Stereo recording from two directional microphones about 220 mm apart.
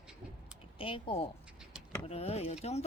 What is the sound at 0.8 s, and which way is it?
A woman's voice, 25° left (ahead or behind).